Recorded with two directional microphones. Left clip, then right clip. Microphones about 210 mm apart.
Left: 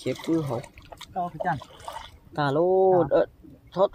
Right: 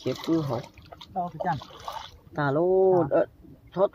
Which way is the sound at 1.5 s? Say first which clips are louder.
Even; 20° right (ahead or behind).